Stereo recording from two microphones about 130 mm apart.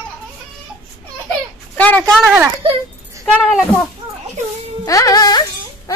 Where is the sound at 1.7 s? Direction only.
15° left (ahead or behind).